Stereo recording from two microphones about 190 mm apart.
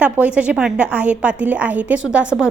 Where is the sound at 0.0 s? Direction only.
5° right (ahead or behind).